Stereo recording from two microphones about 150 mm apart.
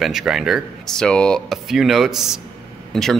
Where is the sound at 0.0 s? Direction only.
Centre (ahead or behind).